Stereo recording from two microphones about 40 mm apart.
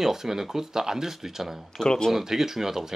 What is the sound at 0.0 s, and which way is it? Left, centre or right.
Speech, centre.